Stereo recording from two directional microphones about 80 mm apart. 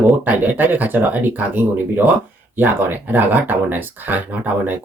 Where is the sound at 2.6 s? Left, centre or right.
Right.